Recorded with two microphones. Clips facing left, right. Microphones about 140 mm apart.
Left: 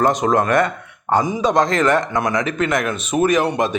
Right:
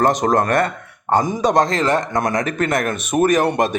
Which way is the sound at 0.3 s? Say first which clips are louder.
Even; 40° right (ahead or behind).